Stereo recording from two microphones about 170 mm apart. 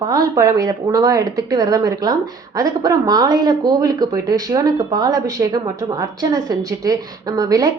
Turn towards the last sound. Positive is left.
turn(degrees=-20)  # may be behind; listen again after turning